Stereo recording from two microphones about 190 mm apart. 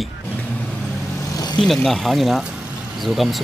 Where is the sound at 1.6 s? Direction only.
5° left (ahead or behind).